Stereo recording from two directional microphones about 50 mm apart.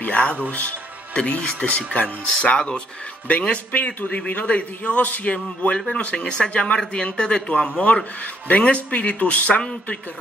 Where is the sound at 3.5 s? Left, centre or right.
Left.